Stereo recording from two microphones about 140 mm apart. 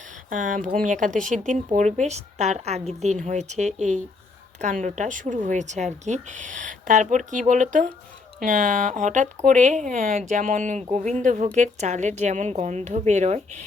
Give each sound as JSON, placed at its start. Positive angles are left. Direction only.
{"t": 0.3, "sound": "speech", "side_deg": -70}